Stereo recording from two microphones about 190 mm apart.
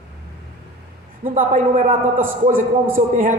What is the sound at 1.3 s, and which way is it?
A man's voice, 45° right (ahead or behind).